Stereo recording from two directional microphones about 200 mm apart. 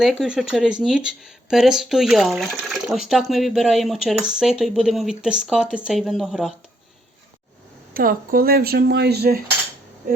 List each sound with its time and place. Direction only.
0.0 s speech: centre (ahead or behind)
7.9 s speech: 45° right (ahead or behind)